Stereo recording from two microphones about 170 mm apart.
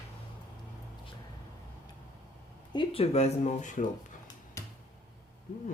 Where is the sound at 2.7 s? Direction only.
35° left (ahead or behind).